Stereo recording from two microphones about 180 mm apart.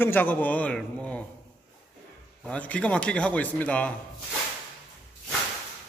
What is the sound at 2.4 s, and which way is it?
Speech, 5° left (ahead or behind).